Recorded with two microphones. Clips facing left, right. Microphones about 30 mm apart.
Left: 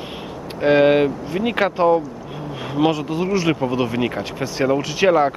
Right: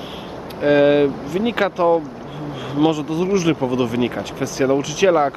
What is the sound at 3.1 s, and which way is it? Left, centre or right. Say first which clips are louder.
Speech: right 2 dB; left.